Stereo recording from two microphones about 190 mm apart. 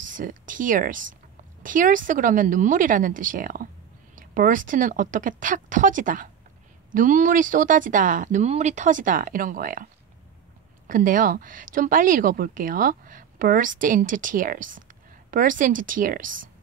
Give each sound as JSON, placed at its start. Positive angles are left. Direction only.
{"t": 0.0, "sound": "speech", "side_deg": -45}
{"t": 10.9, "sound": "speech", "side_deg": -45}